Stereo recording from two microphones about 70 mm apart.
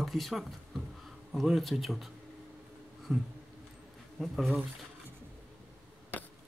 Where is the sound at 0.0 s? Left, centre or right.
Centre.